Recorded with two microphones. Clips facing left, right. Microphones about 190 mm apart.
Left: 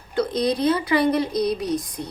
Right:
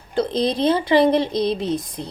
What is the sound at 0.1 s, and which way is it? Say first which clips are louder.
A woman's voice: right 1 dB; 25° right (ahead or behind).